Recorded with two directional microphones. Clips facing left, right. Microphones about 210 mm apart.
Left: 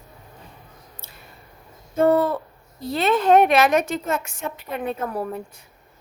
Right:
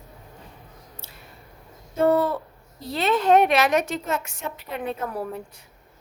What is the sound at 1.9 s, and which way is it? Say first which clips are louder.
A woman's voice: left 2 dB; 50° left (ahead or behind).